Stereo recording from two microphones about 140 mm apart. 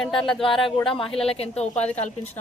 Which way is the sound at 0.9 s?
40° left (ahead or behind).